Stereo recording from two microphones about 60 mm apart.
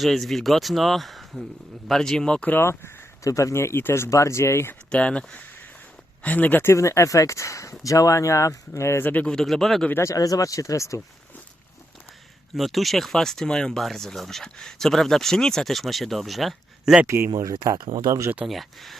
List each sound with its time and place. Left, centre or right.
0.0 s speech: centre
2.5 s speech: left
3.2 s speech: left
4.1 s speech: left
4.9 s speech: centre
6.7 s speech: left
9.2 s speech: centre
10.0 s speech: left
12.5 s speech: centre
17.1 s speech: right
17.3 s speech: right
18.4 s speech: centre